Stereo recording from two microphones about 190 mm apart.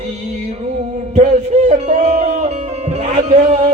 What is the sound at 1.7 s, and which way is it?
Speech, 40° right (ahead or behind).